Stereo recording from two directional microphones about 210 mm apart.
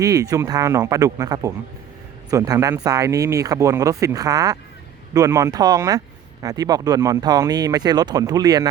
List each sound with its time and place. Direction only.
0.0 s speech: 15° right (ahead or behind)